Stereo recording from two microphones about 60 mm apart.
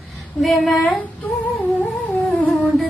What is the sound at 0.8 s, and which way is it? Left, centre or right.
Humming, left.